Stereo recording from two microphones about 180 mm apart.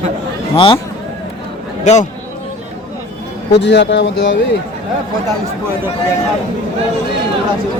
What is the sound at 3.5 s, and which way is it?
Speech, 75° left (ahead or behind).